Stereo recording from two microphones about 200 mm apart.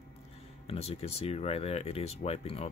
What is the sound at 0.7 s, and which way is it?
Speech, 30° left (ahead or behind).